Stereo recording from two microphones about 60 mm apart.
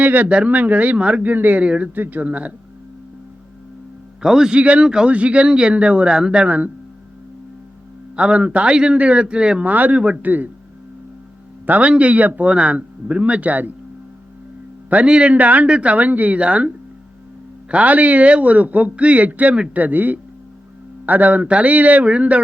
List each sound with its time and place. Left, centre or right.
0.0 s a man's voice: right
1.6 s a man's voice: centre
2.0 s a man's voice: right
4.2 s a man's voice: centre
8.1 s a man's voice: centre
9.6 s a man's voice: right
11.6 s a man's voice: right
15.0 s a man's voice: centre